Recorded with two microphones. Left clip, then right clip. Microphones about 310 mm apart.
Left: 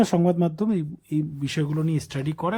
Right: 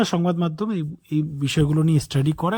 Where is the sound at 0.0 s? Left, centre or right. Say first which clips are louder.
Left 1 dB; centre.